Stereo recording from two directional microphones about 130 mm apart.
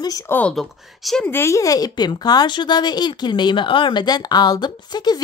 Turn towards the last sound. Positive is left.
turn(degrees=30)  # may be behind; listen again after turning